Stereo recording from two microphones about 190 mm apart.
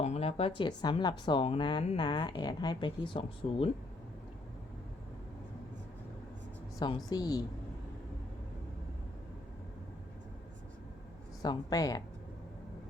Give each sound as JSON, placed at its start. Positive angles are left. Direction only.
{"t": 0.0, "sound": "speech", "side_deg": 35}
{"t": 6.7, "sound": "speech", "side_deg": 20}
{"t": 11.4, "sound": "speech", "side_deg": 20}